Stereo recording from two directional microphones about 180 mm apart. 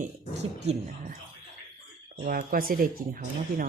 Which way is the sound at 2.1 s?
50° right (ahead or behind).